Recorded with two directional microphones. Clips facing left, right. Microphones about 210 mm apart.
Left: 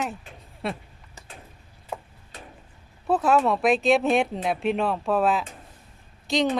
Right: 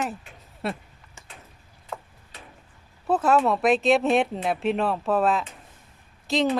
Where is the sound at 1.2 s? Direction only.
35° left (ahead or behind).